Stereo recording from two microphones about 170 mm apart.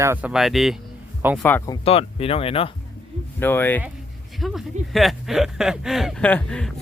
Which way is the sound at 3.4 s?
10° left (ahead or behind).